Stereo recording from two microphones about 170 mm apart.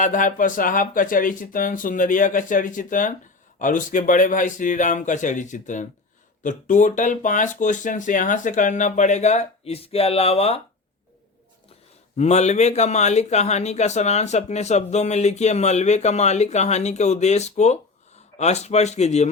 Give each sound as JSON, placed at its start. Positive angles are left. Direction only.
{"t": 0.0, "sound": "speech", "side_deg": 50}
{"t": 12.1, "sound": "speech", "side_deg": 40}